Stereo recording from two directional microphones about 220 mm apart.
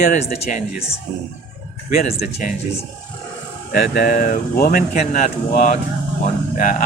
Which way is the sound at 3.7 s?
45° left (ahead or behind).